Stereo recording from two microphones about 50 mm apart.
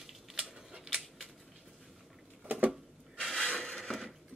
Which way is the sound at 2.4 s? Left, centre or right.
Right.